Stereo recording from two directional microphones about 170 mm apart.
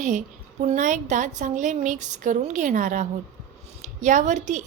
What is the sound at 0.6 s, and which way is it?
A woman's voice, 45° right (ahead or behind).